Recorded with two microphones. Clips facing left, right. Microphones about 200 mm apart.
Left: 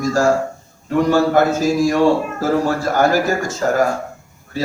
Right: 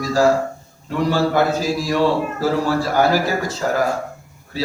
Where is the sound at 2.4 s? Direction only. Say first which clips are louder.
Left 1 dB; 45° left (ahead or behind).